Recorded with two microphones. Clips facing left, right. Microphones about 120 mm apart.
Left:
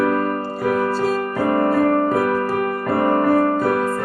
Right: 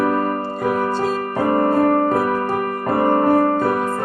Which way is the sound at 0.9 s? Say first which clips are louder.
Even; centre (ahead or behind).